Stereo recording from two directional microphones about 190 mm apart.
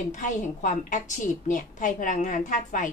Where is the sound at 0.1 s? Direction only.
40° left (ahead or behind).